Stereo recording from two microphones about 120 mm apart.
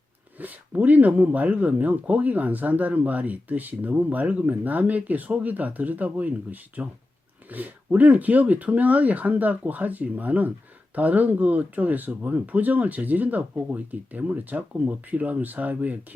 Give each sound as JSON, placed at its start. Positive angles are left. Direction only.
{"t": 0.3, "sound": "speech", "side_deg": -15}